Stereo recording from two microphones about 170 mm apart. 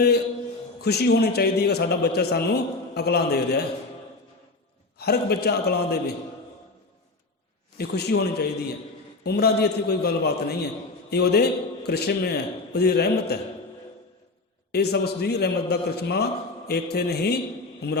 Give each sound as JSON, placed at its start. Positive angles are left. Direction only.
{"t": 0.8, "sound": "a man's voice", "side_deg": 70}
{"t": 4.9, "sound": "a man's voice", "side_deg": 70}
{"t": 7.8, "sound": "a man's voice", "side_deg": 75}
{"t": 14.7, "sound": "a man's voice", "side_deg": 70}